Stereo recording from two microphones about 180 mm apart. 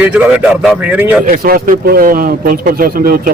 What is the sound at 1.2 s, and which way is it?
Speech, 55° right (ahead or behind).